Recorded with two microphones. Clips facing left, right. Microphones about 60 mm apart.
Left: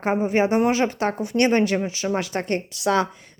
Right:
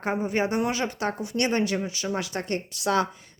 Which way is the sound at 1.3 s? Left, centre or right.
Left.